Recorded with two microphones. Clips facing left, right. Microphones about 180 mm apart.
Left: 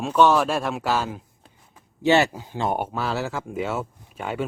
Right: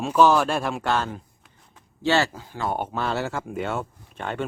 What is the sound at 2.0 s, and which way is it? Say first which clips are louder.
Speech: left 3 dB; 20° left (ahead or behind).